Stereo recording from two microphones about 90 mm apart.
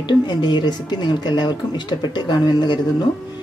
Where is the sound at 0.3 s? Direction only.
55° left (ahead or behind).